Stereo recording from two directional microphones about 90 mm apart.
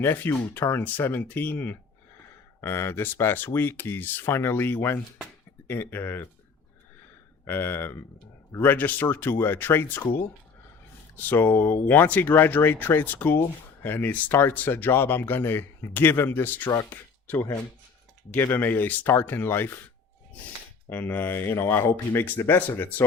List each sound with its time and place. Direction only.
0.0 s speech: 25° left (ahead or behind)
7.4 s speech: 25° left (ahead or behind)
11.2 s speech: 20° left (ahead or behind)
20.9 s speech: 20° left (ahead or behind)